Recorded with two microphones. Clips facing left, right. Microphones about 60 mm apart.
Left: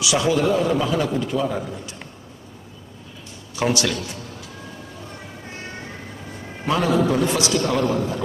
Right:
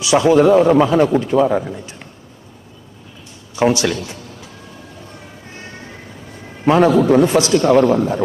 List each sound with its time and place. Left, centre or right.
0.0 s a man's voice: right
3.5 s speech: right
6.7 s a man's voice: right